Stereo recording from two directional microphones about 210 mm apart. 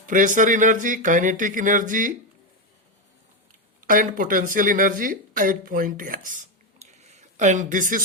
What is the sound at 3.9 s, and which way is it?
Speech, 40° right (ahead or behind).